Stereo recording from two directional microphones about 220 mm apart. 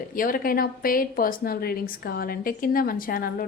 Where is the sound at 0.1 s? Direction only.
40° left (ahead or behind).